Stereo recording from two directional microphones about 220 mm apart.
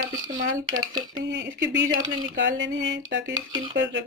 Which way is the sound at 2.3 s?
55° right (ahead or behind).